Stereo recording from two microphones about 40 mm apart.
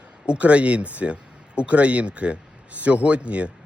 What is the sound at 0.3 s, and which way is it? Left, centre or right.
Speech, right.